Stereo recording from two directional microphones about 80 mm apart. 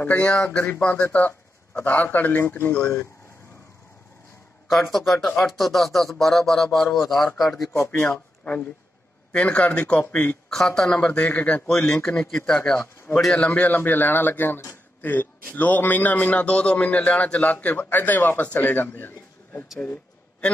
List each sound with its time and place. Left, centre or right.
0.0 s a man's voice: centre
2.7 s a man's voice: centre
4.9 s speech: centre
7.7 s speech: left
9.3 s a man's voice: centre
10.5 s a man's voice: centre
12.7 s speech: left
13.2 s a man's voice: centre
13.5 s a man's voice: left
19.8 s a sound: centre